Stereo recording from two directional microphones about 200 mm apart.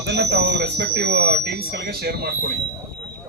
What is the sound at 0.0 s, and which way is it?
Speech, 55° right (ahead or behind).